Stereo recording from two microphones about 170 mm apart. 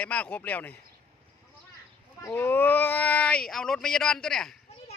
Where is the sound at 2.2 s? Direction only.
10° left (ahead or behind).